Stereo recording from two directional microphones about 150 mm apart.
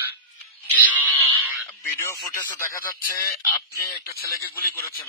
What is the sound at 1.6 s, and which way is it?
Radio, 20° left (ahead or behind).